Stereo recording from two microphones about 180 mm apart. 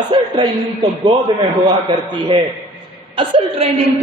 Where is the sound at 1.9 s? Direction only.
25° right (ahead or behind).